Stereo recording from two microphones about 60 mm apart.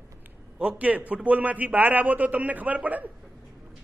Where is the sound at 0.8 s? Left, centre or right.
Right.